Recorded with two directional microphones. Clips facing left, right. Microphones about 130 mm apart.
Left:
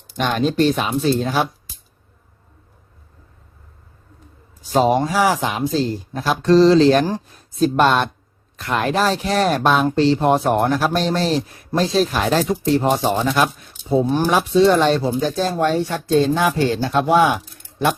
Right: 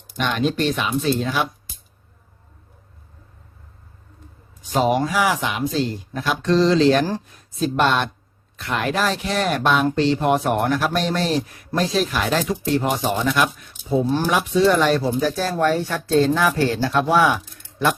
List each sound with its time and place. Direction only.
0.2 s speech: 40° left (ahead or behind)
4.6 s speech: 35° left (ahead or behind)
14.0 s speech: 15° left (ahead or behind)
14.3 s speech: 30° left (ahead or behind)